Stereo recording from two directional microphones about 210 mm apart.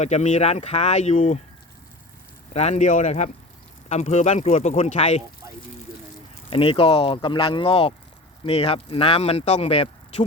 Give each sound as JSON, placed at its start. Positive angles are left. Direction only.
{"t": 0.0, "sound": "speech", "side_deg": 35}
{"t": 2.5, "sound": "speech", "side_deg": 30}
{"t": 6.5, "sound": "speech", "side_deg": 25}